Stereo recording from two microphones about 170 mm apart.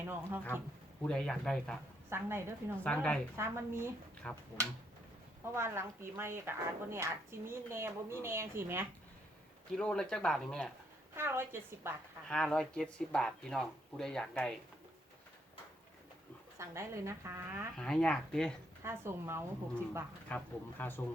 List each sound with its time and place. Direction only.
0.0 s speech: 15° right (ahead or behind)
1.0 s speech: 5° left (ahead or behind)
2.0 s a woman's voice: 15° right (ahead or behind)
2.8 s speech: 5° left (ahead or behind)
3.3 s a woman's voice: 15° right (ahead or behind)
4.2 s speech: 5° left (ahead or behind)
5.5 s a woman's voice: 15° right (ahead or behind)
9.7 s speech: 5° left (ahead or behind)
11.1 s a woman's voice: 15° right (ahead or behind)
12.3 s speech: 5° left (ahead or behind)
16.6 s a woman's voice: 15° right (ahead or behind)
17.7 s speech: 5° left (ahead or behind)
18.8 s a woman's voice: 15° right (ahead or behind)
20.2 s speech: 10° left (ahead or behind)